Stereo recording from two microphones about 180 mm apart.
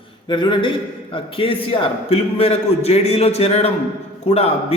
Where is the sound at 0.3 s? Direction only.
25° left (ahead or behind).